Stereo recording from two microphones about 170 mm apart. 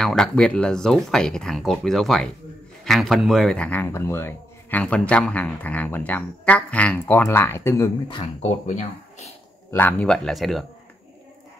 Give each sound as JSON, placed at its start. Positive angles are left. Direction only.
{"t": 0.0, "sound": "speech", "side_deg": 5}
{"t": 8.1, "sound": "speech", "side_deg": 40}
{"t": 9.7, "sound": "speech", "side_deg": 10}